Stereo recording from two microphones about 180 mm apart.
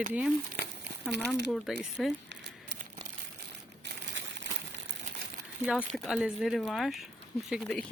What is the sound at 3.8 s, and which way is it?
Crumpling, 80° right.